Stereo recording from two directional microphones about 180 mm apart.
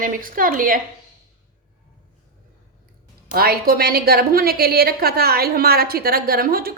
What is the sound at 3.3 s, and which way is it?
A woman's voice, 55° right (ahead or behind).